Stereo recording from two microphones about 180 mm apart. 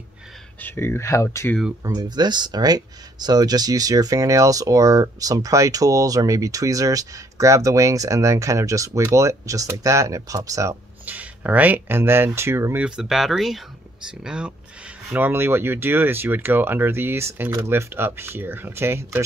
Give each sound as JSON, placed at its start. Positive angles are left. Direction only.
{"t": 0.6, "sound": "speech", "side_deg": 10}
{"t": 1.8, "sound": "speech", "side_deg": -20}